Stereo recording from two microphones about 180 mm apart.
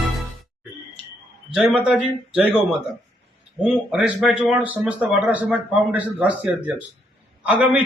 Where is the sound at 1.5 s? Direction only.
5° right (ahead or behind).